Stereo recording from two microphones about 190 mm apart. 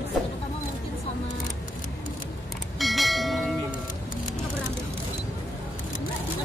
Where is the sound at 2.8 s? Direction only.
Centre (ahead or behind).